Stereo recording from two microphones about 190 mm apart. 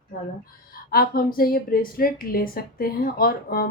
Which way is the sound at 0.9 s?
50° left (ahead or behind).